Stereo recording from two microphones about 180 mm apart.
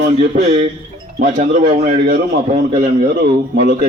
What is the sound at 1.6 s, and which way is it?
A man's voice, 35° right (ahead or behind).